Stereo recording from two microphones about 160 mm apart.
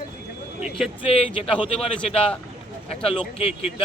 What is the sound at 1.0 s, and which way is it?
A man's voice, 35° left (ahead or behind).